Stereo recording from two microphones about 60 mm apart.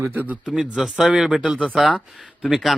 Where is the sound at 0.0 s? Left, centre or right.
Right.